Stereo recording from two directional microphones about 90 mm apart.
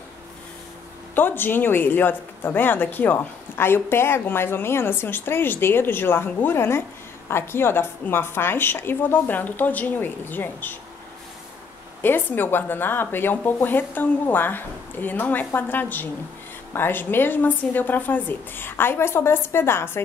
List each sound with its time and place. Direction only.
1.1 s speech: 25° left (ahead or behind)
12.0 s speech: 25° left (ahead or behind)